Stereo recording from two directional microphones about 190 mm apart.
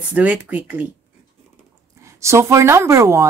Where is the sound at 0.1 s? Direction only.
5° right (ahead or behind).